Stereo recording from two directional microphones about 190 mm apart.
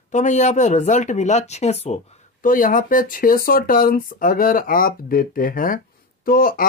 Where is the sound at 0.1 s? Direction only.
40° left (ahead or behind).